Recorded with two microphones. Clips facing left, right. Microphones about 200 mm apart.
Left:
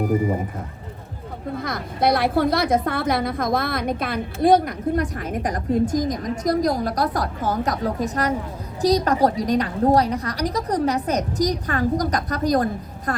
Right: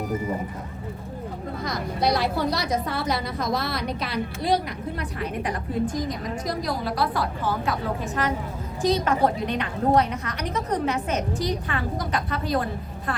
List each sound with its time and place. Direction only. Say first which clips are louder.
1.5 s a woman's voice: left 2 dB; 55° left (ahead or behind)